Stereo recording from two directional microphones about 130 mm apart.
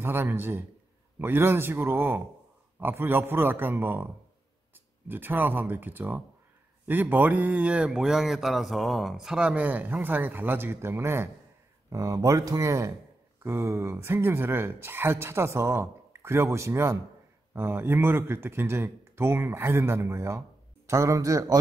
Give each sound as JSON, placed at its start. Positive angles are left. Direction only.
{"t": 0.0, "sound": "speech", "side_deg": -15}